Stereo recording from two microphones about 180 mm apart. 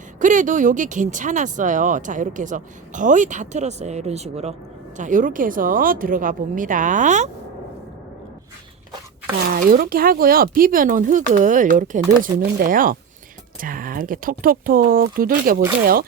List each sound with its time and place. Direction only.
0.2 s speech: 45° right (ahead or behind)
9.5 s speech: 50° right (ahead or behind)